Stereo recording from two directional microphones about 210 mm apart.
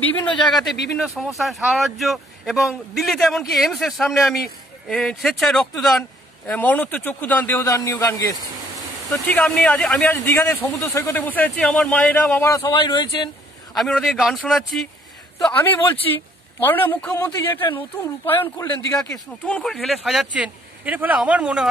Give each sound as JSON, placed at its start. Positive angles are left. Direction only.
{"t": 0.0, "sound": "a man's voice", "side_deg": 5}
{"t": 9.1, "sound": "a man's voice", "side_deg": 5}
{"t": 13.7, "sound": "a man's voice", "side_deg": 0}